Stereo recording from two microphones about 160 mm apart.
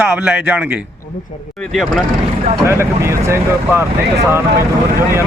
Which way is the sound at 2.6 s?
15° right (ahead or behind).